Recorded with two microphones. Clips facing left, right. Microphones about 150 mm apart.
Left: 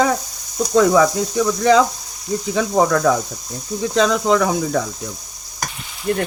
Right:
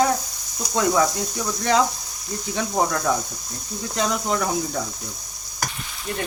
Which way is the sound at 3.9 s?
90° left.